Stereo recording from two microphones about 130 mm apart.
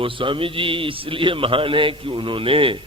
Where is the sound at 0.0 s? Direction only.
40° right (ahead or behind).